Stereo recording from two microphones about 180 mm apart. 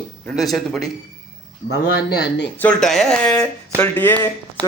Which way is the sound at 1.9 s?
65° left (ahead or behind).